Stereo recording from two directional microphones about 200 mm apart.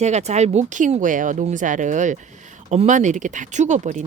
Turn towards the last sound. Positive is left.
turn(degrees=-35)  # may be behind; listen again after turning